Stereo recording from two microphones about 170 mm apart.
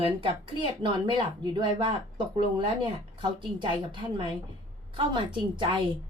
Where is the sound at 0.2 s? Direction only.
30° right (ahead or behind).